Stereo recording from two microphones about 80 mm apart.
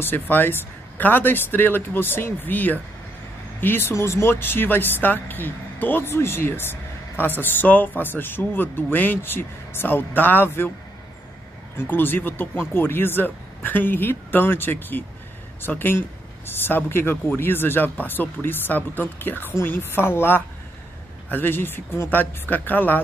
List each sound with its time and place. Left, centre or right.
0.0 s speech: left
11.7 s speech: left